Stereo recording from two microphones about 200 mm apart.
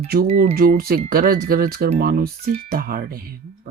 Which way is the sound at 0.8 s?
50° right (ahead or behind).